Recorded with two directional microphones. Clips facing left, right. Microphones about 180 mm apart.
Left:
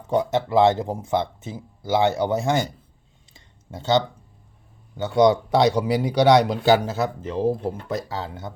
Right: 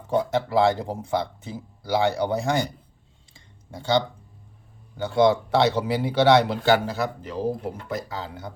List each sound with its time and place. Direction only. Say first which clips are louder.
0.1 s speech: left 2 dB; 20° left (ahead or behind)
3.3 s clicking: left 2 dB; 20° left (ahead or behind)
4.9 s speech: left 2 dB; 20° left (ahead or behind)